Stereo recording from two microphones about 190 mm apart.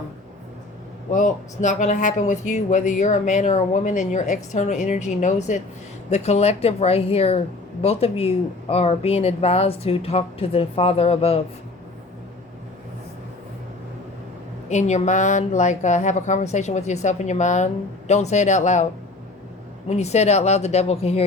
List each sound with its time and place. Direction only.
1.1 s speech: 40° left (ahead or behind)
14.7 s speech: 35° left (ahead or behind)
19.9 s speech: 35° left (ahead or behind)